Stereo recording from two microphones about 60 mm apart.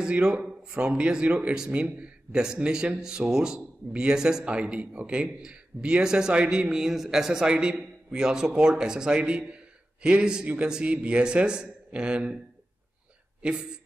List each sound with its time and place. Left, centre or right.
0.0 s speech: centre
13.4 s speech: centre